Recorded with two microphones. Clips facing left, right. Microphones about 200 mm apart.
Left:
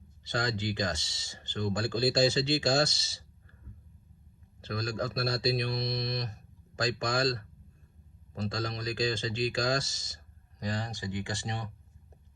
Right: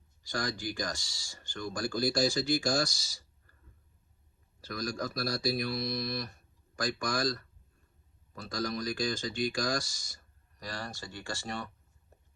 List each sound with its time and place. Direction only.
0.3 s speech: 20° left (ahead or behind)
4.6 s speech: 25° left (ahead or behind)
8.4 s speech: 25° left (ahead or behind)